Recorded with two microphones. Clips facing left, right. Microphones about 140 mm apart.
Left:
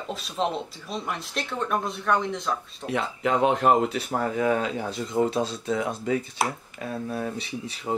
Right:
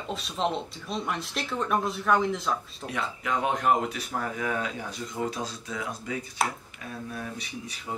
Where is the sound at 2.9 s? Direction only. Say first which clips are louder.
Left 5 dB; 30° left (ahead or behind).